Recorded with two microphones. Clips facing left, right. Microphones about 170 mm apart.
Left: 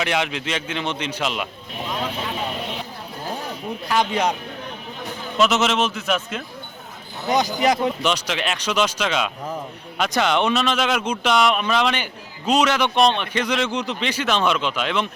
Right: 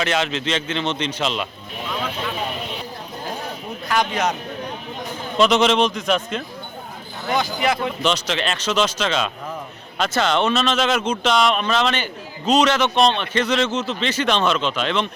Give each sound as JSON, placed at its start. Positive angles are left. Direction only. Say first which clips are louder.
{"t": 0.0, "sound": "a man's voice", "louder": "right 1 dB", "side_deg": 15}
{"t": 5.4, "sound": "a man's voice", "louder": "right 3 dB", "side_deg": 5}
{"t": 7.4, "sound": "speech", "louder": "left 2 dB", "side_deg": 40}
{"t": 7.8, "sound": "a man's voice", "louder": "even", "side_deg": 10}